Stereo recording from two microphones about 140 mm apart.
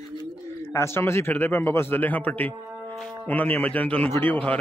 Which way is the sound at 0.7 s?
15° left (ahead or behind).